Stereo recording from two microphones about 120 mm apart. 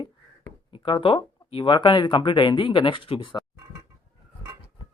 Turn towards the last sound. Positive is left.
turn(degrees=45)  # may be behind; listen again after turning